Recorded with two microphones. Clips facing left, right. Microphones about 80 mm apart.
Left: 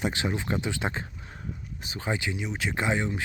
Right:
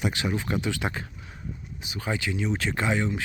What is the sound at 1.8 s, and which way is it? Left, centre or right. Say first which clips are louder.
Speech: right 1 dB; left.